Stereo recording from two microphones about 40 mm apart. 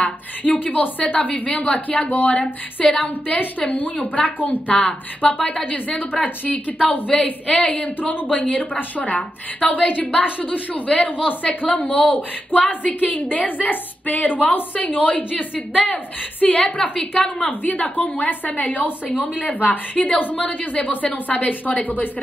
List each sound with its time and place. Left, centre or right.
0.4 s a woman's voice: left
2.3 s a woman's voice: left
3.3 s a woman's voice: left
16.5 s a woman's voice: left
17.5 s a woman's voice: left